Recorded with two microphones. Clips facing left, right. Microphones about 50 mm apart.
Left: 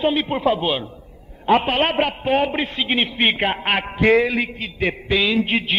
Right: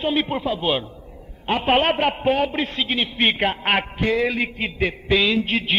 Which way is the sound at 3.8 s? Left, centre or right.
Left.